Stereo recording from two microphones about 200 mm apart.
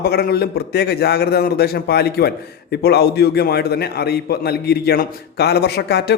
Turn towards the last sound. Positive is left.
turn(degrees=55)  # may be behind; listen again after turning